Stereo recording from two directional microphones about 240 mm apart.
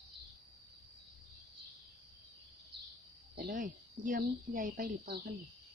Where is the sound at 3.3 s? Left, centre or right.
Right.